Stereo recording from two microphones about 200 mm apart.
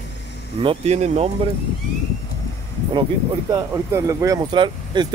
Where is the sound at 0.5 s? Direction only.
30° right (ahead or behind).